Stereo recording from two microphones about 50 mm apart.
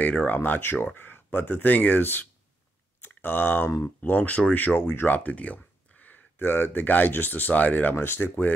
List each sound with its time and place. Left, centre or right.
0.0 s speech: left
0.4 s speech: left